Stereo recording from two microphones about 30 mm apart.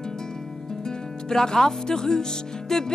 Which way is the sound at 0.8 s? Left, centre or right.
Centre.